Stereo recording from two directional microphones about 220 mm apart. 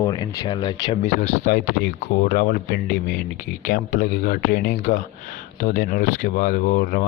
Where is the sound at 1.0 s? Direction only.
35° left (ahead or behind).